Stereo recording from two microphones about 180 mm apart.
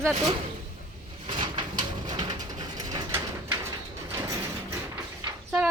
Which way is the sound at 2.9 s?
15° right (ahead or behind).